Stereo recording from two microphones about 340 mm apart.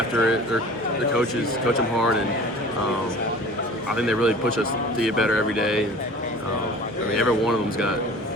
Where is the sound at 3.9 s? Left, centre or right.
Centre.